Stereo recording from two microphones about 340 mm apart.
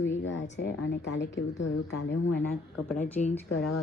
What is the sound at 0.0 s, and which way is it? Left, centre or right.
A woman's voice, left.